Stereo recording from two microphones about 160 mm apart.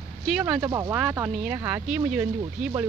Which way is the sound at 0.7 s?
20° right (ahead or behind).